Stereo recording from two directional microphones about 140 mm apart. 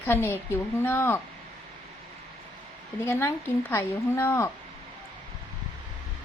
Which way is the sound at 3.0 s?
15° left (ahead or behind).